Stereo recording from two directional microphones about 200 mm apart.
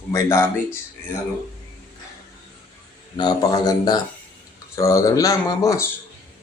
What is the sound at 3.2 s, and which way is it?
Speech, 20° left (ahead or behind).